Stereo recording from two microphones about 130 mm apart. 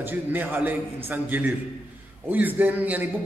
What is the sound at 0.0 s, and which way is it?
A man's voice, 15° right (ahead or behind).